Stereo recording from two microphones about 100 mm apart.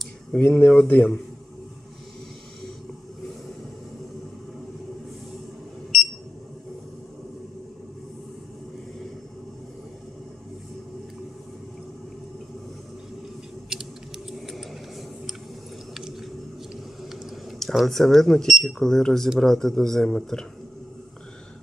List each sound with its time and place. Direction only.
0.4 s speech: 20° left (ahead or behind)
13.7 s a sound: 5° right (ahead or behind)
15.9 s squish: 5° right (ahead or behind)
17.1 s speech: centre (ahead or behind)